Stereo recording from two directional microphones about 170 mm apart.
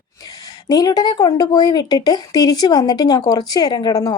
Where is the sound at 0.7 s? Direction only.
25° left (ahead or behind).